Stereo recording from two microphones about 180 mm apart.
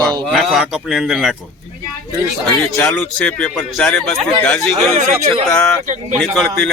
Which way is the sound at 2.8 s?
5° left (ahead or behind).